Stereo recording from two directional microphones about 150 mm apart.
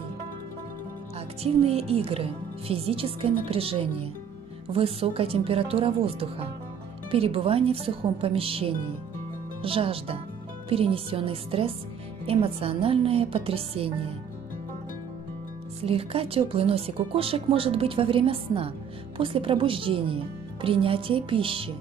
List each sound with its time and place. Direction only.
1.4 s speech: 45° right (ahead or behind)
15.8 s speech: 40° right (ahead or behind)